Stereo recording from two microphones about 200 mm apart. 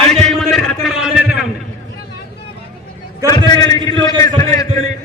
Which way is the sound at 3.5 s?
20° left (ahead or behind).